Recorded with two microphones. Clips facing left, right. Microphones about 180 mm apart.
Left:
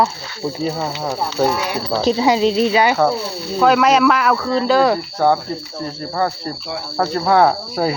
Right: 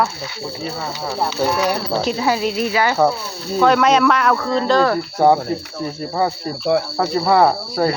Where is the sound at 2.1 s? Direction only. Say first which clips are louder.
Left 7 dB; 25° left (ahead or behind).